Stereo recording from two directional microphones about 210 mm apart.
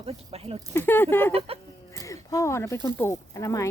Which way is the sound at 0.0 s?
25° right (ahead or behind).